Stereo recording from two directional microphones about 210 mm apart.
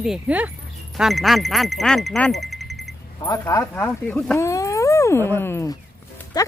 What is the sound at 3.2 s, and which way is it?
Speech, 15° left (ahead or behind).